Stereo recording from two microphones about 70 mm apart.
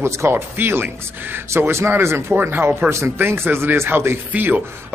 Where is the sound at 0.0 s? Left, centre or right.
Right.